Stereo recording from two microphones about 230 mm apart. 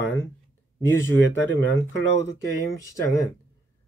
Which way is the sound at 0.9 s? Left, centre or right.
Centre.